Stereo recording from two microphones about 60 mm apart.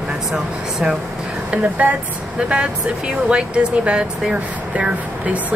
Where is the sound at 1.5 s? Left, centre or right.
Right.